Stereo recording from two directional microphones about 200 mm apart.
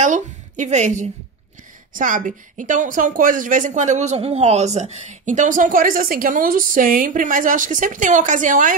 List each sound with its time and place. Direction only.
0.0 s a woman's voice: 40° right (ahead or behind)